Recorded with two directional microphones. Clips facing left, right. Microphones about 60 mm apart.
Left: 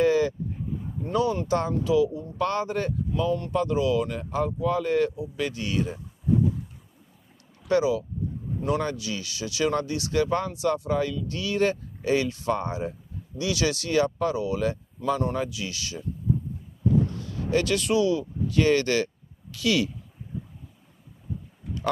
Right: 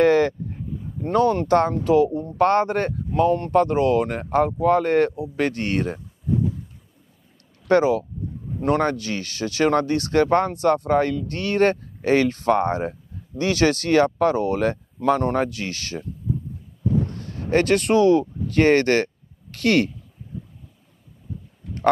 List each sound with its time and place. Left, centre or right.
0.0 s a sound: right
1.0 s speech: right
7.6 s speech: right